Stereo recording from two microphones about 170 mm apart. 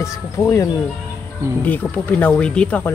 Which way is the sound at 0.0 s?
20° left (ahead or behind).